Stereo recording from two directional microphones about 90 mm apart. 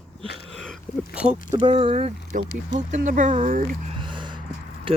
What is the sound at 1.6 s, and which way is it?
Speech, 85° right.